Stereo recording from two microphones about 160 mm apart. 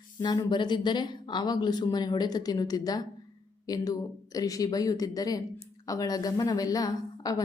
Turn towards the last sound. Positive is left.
turn(degrees=25)  # may be behind; listen again after turning